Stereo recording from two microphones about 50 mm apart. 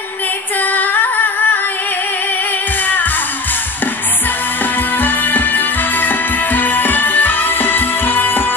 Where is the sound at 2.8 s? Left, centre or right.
Left.